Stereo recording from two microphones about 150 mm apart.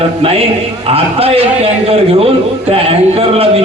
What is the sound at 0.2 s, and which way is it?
A man's voice, 40° right (ahead or behind).